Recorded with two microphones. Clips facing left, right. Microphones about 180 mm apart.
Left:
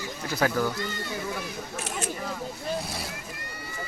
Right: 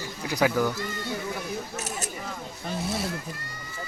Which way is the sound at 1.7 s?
40° right (ahead or behind).